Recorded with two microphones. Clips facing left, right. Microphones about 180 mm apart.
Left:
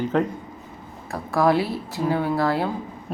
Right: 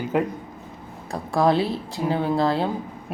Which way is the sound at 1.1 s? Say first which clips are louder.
Even; 20° right (ahead or behind).